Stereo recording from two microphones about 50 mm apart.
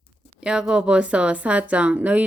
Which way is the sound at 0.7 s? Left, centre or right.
Centre.